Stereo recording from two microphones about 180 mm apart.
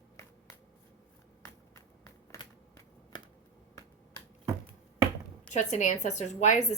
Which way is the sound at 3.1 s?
25° left (ahead or behind).